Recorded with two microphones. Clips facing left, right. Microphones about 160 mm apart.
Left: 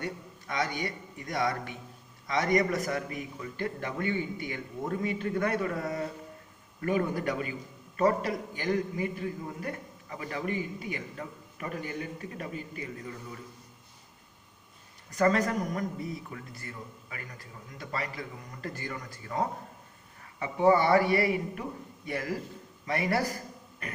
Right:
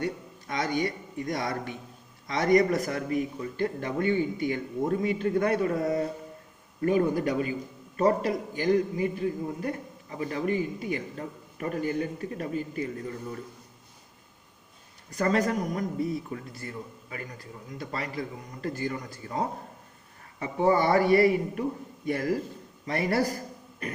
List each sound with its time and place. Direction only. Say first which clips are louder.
0.0 s a man's voice: right 5 dB; 35° right (ahead or behind)
15.1 s a man's voice: even; 30° right (ahead or behind)